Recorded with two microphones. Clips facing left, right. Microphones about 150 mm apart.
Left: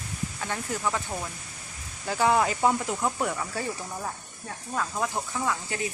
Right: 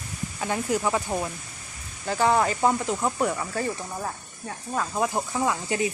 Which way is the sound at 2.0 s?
5° left (ahead or behind).